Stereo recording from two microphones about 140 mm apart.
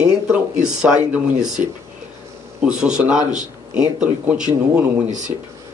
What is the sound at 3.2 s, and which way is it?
Speech, 60° right (ahead or behind).